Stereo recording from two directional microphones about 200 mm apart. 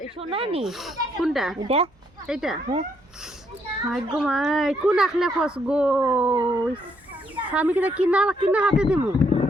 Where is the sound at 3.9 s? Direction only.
Centre (ahead or behind).